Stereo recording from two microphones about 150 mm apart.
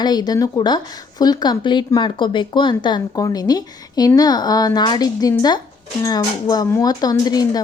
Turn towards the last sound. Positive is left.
turn(degrees=25)  # may be behind; listen again after turning